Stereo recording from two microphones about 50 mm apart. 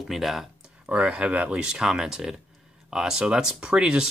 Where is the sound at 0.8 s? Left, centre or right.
Right.